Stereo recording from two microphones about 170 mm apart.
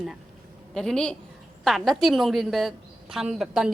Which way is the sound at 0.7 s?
5° left (ahead or behind).